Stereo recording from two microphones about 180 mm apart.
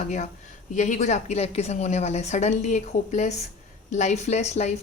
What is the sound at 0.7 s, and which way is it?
A woman's voice, 45° left (ahead or behind).